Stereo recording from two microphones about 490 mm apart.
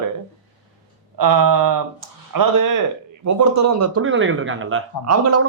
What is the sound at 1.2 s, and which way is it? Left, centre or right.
A man's voice, right.